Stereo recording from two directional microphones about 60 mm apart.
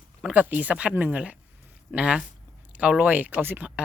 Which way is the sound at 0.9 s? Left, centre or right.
Right.